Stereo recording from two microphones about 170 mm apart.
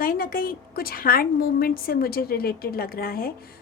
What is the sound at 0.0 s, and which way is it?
A woman's voice, 60° left (ahead or behind).